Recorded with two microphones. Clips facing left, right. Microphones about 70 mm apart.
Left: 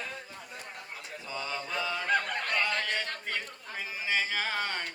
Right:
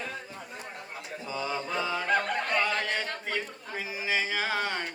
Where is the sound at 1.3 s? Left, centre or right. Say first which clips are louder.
Right 4 dB; centre.